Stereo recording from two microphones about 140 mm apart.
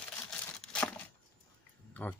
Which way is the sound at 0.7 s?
10° left (ahead or behind).